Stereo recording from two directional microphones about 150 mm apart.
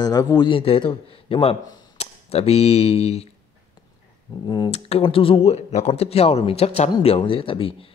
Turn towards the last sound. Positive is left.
turn(degrees=40)  # may be behind; listen again after turning